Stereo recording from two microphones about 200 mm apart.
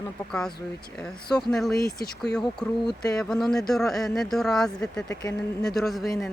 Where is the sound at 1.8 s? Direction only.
50° left (ahead or behind).